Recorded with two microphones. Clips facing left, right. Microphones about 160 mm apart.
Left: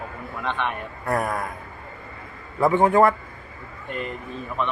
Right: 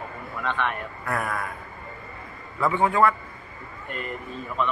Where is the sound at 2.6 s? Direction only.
40° left (ahead or behind).